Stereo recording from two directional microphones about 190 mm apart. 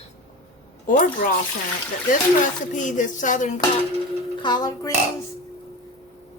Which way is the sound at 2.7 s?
40° left (ahead or behind).